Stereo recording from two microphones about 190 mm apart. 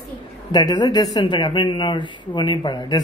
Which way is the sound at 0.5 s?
20° left (ahead or behind).